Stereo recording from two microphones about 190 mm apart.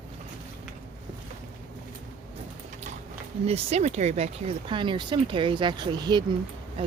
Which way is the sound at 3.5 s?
35° right (ahead or behind).